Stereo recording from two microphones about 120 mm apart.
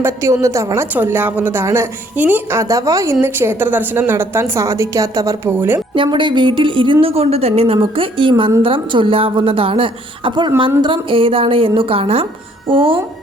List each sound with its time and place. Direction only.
0.0 s a woman's voice: 25° right (ahead or behind)
5.9 s speech: 45° right (ahead or behind)